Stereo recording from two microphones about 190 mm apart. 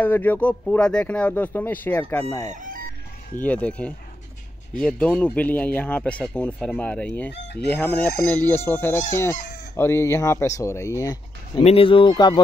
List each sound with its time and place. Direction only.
0.0 s speech: 10° left (ahead or behind)
2.5 s fowl: 45° right (ahead or behind)
3.3 s speech: 10° left (ahead or behind)
7.2 s chicken: 60° left (ahead or behind)
7.7 s speech: 10° left (ahead or behind)